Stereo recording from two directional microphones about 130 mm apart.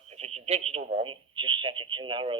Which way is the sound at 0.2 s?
50° right (ahead or behind).